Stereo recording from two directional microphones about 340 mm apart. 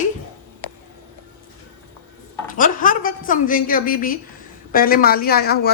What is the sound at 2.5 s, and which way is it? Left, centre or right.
Speech, left.